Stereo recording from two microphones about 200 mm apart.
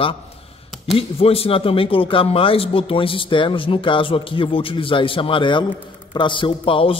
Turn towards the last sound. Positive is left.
turn(degrees=25)  # may be behind; listen again after turning